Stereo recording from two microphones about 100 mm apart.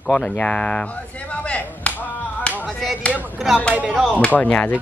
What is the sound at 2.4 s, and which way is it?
Music, 10° left (ahead or behind).